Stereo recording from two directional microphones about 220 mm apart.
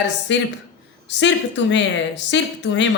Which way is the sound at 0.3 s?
55° left (ahead or behind).